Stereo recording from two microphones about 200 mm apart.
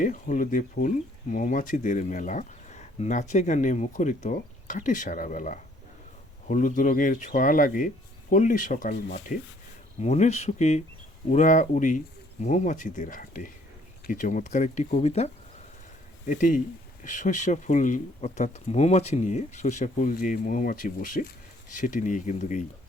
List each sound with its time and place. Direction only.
0.0 s speech: 40° left (ahead or behind)